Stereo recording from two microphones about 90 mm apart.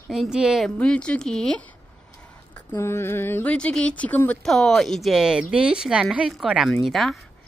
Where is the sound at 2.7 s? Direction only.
25° left (ahead or behind).